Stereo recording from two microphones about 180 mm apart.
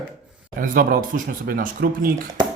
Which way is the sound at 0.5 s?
50° right (ahead or behind).